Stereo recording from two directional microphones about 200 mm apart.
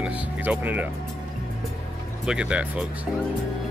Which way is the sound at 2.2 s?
5° right (ahead or behind).